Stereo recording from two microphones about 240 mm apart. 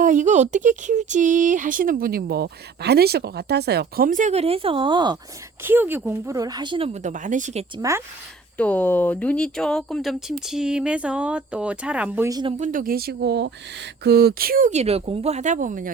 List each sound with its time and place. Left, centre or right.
0.0 s speech: right
5.6 s speech: centre; by 7.6 s right
7.8 s a woman's voice: centre
8.5 s speech: centre
12.5 s speech: right